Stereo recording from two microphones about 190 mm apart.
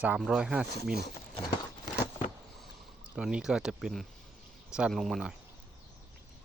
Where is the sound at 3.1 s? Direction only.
5° right (ahead or behind).